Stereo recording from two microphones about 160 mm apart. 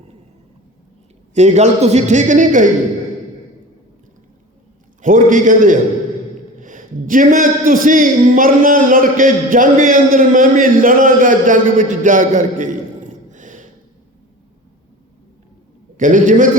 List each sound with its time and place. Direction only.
1.3 s a man's voice: 45° right (ahead or behind)
5.0 s speech: 55° right (ahead or behind)
16.0 s speech: 55° right (ahead or behind)